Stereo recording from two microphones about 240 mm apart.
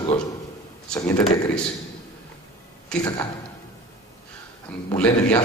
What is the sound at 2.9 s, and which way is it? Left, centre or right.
Speech, centre.